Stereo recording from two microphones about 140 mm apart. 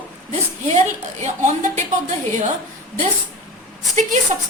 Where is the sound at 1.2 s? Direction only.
55° right (ahead or behind).